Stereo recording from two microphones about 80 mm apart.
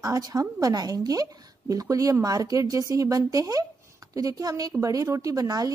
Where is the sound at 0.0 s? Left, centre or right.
Right.